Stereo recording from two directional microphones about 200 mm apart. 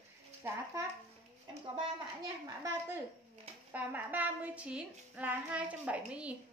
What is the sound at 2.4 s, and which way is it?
Speech, 15° right (ahead or behind).